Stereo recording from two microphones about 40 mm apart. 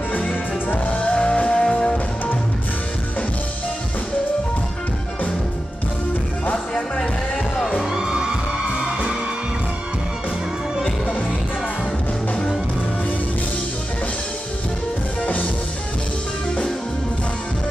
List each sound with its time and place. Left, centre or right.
0.3 s music: left
1.0 s music: left
7.9 s music: centre